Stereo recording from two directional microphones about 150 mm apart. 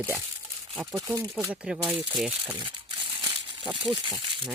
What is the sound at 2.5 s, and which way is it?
Crumpling, 30° right (ahead or behind).